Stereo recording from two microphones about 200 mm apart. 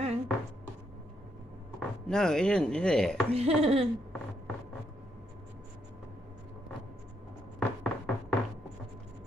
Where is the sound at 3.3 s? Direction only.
30° right (ahead or behind).